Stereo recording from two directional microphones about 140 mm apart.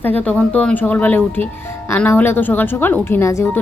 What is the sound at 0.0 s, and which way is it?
A woman's voice, 10° left (ahead or behind).